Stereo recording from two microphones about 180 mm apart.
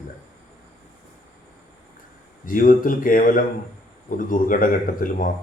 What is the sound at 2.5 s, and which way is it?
Speech, 50° left (ahead or behind).